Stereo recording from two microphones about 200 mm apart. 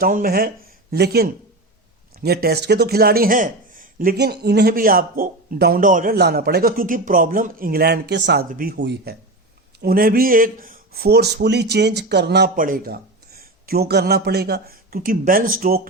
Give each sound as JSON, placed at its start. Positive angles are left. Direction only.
{"t": 0.0, "sound": "speech", "side_deg": -45}